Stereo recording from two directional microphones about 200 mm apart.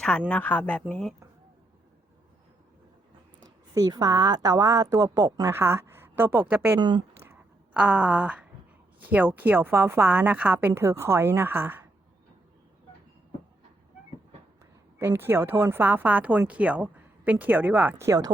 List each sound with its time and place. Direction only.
0.3 s speech: 10° left (ahead or behind)
3.4 s a woman's voice: 20° right (ahead or behind)
6.7 s a woman's voice: 20° right (ahead or behind)
7.2 s a sound: 10° right (ahead or behind)
9.0 s speech: 10° right (ahead or behind)
14.9 s speech: 10° right (ahead or behind)